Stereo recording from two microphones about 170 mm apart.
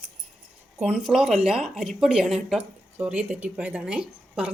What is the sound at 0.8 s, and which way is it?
A woman's voice, 5° right (ahead or behind).